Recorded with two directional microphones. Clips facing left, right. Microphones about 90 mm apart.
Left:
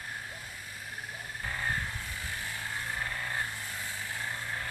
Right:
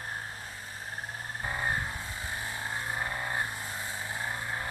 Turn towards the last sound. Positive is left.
turn(degrees=-20)  # may be behind; listen again after turning